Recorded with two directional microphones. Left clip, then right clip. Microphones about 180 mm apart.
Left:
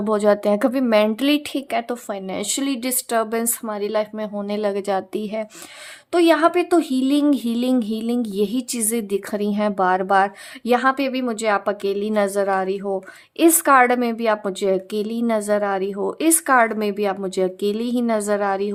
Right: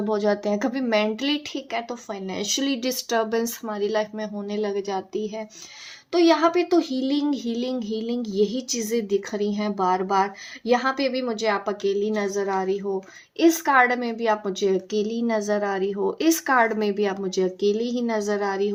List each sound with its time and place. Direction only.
0.0 s speech: 30° left (ahead or behind)
2.3 s a woman's voice: 25° left (ahead or behind); by 5.5 s 45° left (ahead or behind)
6.1 s a woman's voice: 35° left (ahead or behind)